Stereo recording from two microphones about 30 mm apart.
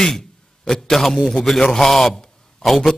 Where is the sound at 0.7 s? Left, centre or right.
Centre.